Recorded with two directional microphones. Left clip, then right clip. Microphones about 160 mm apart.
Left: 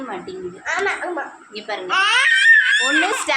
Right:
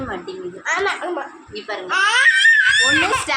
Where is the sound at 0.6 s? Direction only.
15° right (ahead or behind).